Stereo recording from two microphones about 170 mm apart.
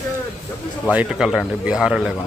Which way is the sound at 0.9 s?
5° right (ahead or behind).